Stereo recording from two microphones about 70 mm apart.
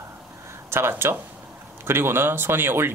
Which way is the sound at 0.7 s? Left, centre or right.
Right.